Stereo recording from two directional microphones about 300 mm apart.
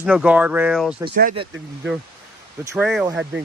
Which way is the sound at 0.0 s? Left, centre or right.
Centre.